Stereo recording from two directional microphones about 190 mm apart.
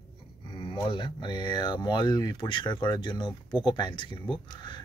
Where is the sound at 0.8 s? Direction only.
25° left (ahead or behind).